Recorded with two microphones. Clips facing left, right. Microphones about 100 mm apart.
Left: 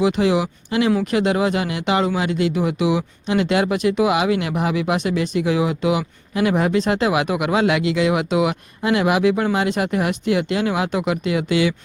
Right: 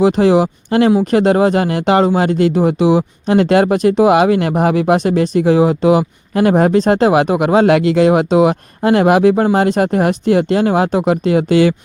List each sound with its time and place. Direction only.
0.0 s speech: 40° right (ahead or behind)